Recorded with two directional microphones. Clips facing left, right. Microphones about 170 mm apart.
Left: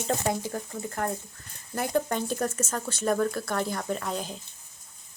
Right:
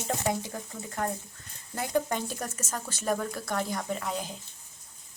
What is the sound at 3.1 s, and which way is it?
Speech, 20° right (ahead or behind).